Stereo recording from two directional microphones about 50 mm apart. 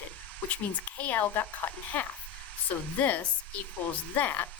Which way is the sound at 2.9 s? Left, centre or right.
Left.